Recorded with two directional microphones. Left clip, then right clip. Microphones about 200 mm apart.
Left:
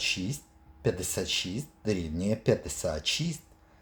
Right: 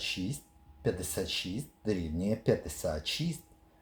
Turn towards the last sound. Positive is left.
turn(degrees=15)  # may be behind; listen again after turning